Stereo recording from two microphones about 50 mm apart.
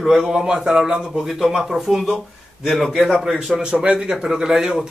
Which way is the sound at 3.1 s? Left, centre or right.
Centre.